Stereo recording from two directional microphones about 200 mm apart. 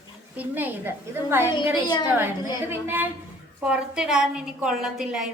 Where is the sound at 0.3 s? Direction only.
10° right (ahead or behind).